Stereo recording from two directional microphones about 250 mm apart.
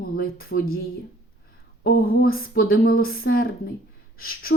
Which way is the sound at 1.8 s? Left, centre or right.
Left.